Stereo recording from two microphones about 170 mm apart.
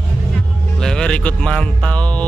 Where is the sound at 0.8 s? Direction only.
5° left (ahead or behind).